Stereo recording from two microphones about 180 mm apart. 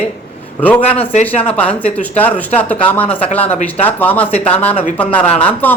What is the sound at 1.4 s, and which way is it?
Speech, 10° left (ahead or behind).